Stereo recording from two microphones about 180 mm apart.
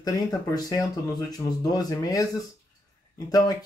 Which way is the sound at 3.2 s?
20° left (ahead or behind).